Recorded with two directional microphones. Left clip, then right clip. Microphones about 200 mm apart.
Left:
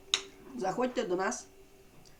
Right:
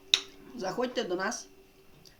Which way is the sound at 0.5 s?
15° right (ahead or behind).